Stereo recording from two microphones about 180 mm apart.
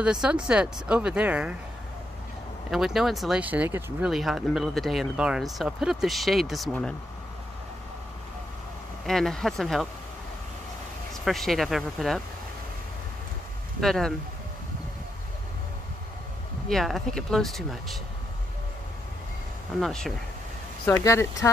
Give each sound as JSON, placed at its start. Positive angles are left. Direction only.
{"t": 0.0, "sound": "speech", "side_deg": -5}
{"t": 2.7, "sound": "speech", "side_deg": 0}
{"t": 9.0, "sound": "speech", "side_deg": 0}
{"t": 11.2, "sound": "speech", "side_deg": 0}
{"t": 13.7, "sound": "speech", "side_deg": 0}
{"t": 16.6, "sound": "speech", "side_deg": 0}
{"t": 19.8, "sound": "speech", "side_deg": 0}
{"t": 20.8, "sound": "speech", "side_deg": 15}